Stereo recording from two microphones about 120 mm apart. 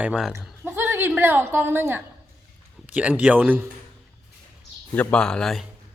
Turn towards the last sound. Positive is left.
turn(degrees=5)  # may be behind; listen again after turning